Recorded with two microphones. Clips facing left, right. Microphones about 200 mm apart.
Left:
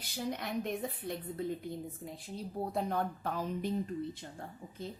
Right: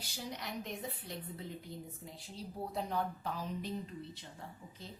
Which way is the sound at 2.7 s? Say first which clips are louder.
Left 2 dB; 55° left (ahead or behind).